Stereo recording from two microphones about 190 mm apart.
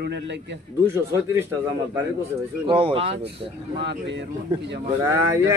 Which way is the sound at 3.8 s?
65° right (ahead or behind).